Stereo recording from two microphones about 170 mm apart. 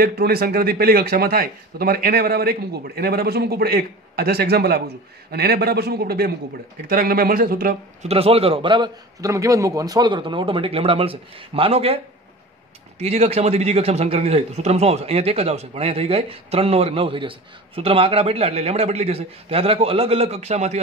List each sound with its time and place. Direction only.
0.0 s speech: 60° right (ahead or behind)
8.0 s a man's voice: 35° right (ahead or behind)
13.0 s a man's voice: 40° right (ahead or behind)